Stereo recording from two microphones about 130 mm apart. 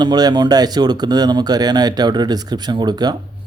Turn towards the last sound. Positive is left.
turn(degrees=-35)  # may be behind; listen again after turning